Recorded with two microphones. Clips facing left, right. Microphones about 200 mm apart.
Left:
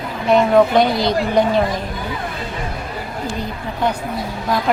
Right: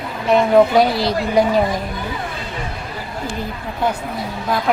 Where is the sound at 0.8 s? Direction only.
30° right (ahead or behind).